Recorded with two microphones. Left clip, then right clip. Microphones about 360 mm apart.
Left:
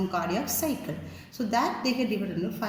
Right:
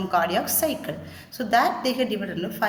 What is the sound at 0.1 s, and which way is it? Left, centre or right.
Speech, right.